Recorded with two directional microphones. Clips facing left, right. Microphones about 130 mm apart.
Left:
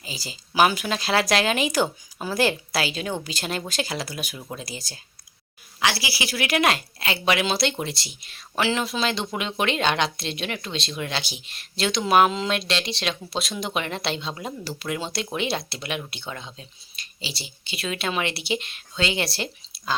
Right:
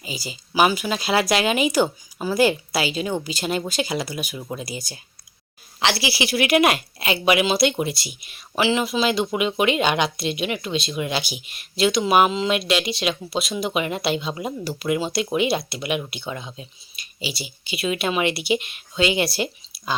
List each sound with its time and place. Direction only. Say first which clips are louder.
0.0 s speech: right 5 dB; 35° left (ahead or behind)
0.3 s speech: right 1 dB; 5° right (ahead or behind)
5.8 s speech: right 3 dB; 25° right (ahead or behind)